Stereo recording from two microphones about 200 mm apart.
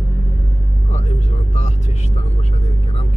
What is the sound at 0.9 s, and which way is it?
Vehicle, 30° left (ahead or behind).